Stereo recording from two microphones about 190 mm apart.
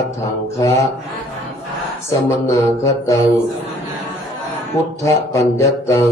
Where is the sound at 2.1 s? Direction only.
15° left (ahead or behind).